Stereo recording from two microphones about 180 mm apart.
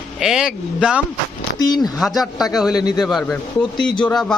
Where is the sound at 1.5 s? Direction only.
20° left (ahead or behind).